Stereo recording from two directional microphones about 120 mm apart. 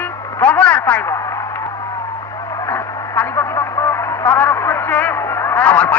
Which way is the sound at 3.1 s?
20° left (ahead or behind).